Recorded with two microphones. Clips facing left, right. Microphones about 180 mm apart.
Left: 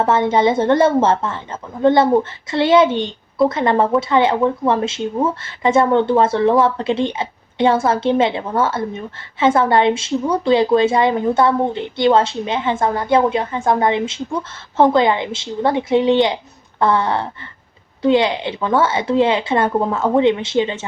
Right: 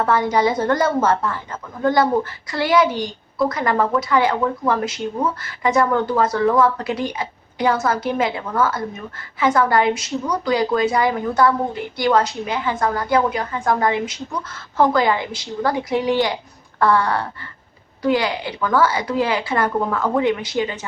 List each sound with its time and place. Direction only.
0.0 s a woman's voice: 25° left (ahead or behind)